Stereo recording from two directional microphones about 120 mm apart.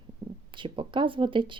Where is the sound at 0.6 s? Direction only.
45° right (ahead or behind).